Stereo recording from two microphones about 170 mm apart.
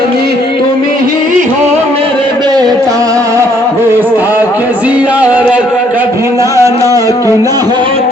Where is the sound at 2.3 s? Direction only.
25° right (ahead or behind).